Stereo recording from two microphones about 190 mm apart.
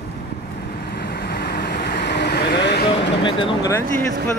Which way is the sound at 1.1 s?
55° left (ahead or behind).